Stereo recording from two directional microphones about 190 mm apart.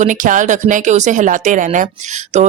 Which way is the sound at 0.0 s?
45° right (ahead or behind).